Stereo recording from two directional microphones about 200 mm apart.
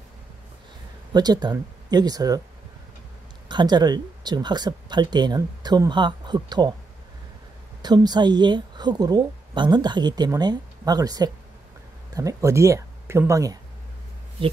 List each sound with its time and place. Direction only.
1.1 s a woman's voice: 20° right (ahead or behind)
3.4 s a woman's voice: 20° right (ahead or behind)
7.8 s a woman's voice: 20° right (ahead or behind)